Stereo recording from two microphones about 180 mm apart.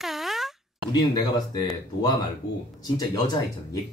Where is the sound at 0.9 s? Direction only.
20° left (ahead or behind).